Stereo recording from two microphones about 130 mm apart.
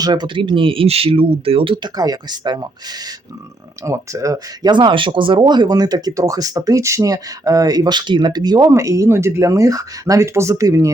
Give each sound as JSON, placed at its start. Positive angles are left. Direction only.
{"t": 0.0, "sound": "speech", "side_deg": -35}